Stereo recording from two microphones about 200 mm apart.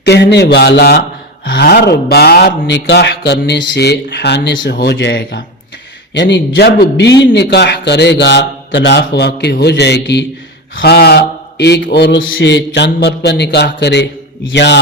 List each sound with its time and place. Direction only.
0.0 s mantra: 55° left (ahead or behind)